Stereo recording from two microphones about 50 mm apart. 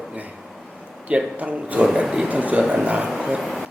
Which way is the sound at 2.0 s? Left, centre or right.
Centre.